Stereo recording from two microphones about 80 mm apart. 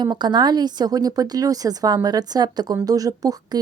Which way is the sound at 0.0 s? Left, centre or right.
Right.